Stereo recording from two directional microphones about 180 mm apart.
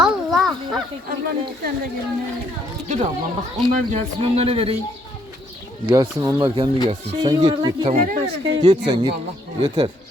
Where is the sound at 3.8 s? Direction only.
40° right (ahead or behind).